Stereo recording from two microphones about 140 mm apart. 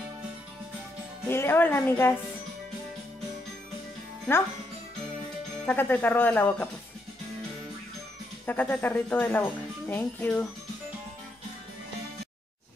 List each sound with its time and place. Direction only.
1.3 s speech: 15° left (ahead or behind)
4.3 s speech: 10° left (ahead or behind)
5.7 s speech: 15° left (ahead or behind)
8.5 s speech: 15° left (ahead or behind)